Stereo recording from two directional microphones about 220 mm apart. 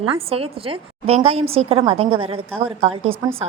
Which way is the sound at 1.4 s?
70° right (ahead or behind).